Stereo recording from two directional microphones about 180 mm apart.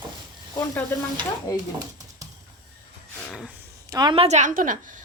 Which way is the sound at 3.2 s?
5° left (ahead or behind).